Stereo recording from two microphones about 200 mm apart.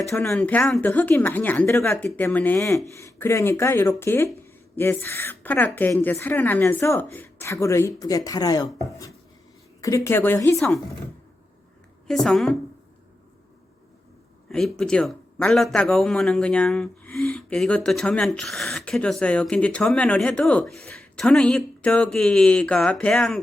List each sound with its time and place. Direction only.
0.1 s a woman's voice: 5° left (ahead or behind); by 8.7 s 20° left (ahead or behind)
9.8 s a woman's voice: 15° left (ahead or behind)
12.0 s a man's voice: centre (ahead or behind)
14.5 s a man's voice: 5° left (ahead or behind)